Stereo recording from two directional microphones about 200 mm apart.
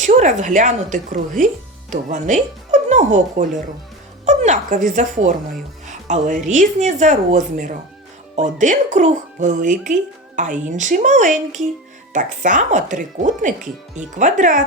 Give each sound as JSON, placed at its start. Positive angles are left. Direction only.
{"t": 0.0, "sound": "speech", "side_deg": -35}
{"t": 5.8, "sound": "music", "side_deg": -35}
{"t": 6.5, "sound": "speech", "side_deg": -35}